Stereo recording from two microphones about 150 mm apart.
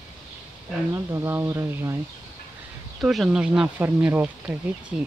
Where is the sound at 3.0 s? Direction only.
Centre (ahead or behind).